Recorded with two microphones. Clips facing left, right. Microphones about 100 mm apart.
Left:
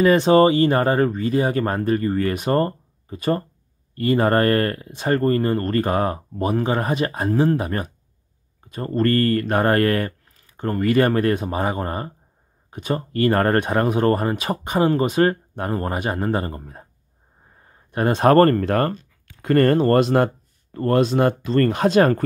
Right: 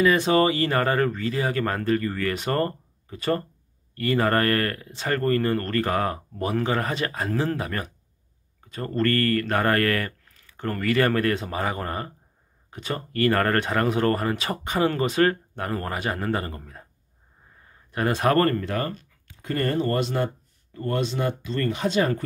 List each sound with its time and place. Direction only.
0.0 s speech: 30° left (ahead or behind); by 22.2 s 50° left (ahead or behind)